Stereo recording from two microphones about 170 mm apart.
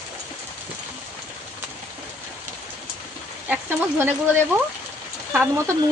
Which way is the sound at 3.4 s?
10° right (ahead or behind).